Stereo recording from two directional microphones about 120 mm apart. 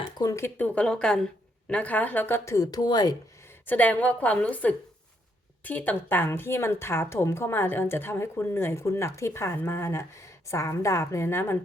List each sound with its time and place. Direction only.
0.2 s speech: 25° left (ahead or behind)
3.7 s speech: 15° left (ahead or behind)